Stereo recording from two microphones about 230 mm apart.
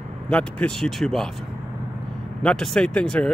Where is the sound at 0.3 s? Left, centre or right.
Centre.